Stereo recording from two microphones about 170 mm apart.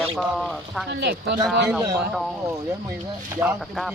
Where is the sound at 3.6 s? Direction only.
Centre (ahead or behind).